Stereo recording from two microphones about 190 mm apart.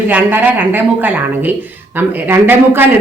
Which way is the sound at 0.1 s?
10° right (ahead or behind).